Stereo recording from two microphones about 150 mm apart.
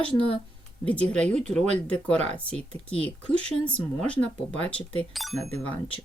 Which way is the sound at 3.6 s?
5° left (ahead or behind).